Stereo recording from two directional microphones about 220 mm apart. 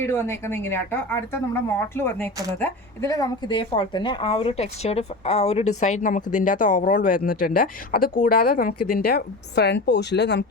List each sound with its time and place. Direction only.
0.0 s a woman's voice: 10° left (ahead or behind); by 10.4 s 50° left (ahead or behind)